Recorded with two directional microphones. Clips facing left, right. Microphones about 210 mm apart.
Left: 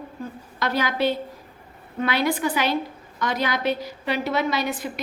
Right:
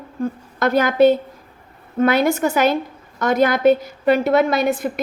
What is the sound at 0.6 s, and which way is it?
A woman's voice, 50° right (ahead or behind).